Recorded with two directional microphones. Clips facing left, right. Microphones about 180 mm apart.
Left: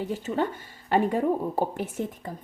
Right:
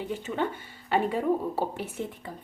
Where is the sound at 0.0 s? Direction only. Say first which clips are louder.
Left 3 dB; 40° left (ahead or behind).